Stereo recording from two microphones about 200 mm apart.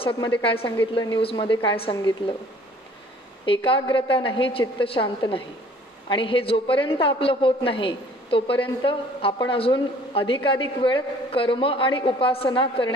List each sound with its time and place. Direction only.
0.0 s a woman's voice: 25° left (ahead or behind)
3.4 s a woman's voice: 25° left (ahead or behind)